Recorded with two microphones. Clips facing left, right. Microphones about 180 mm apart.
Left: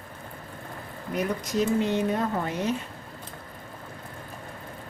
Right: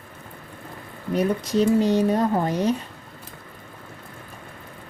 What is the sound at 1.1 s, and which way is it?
Speech, 30° right (ahead or behind).